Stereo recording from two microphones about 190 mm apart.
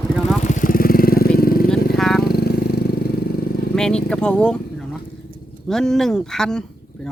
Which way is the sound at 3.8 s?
5° left (ahead or behind).